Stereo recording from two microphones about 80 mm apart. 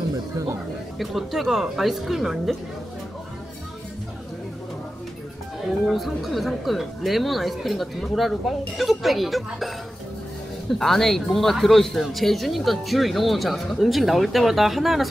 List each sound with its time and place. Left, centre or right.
0.9 s speech: centre
5.9 s speech: centre
10.7 s speech: centre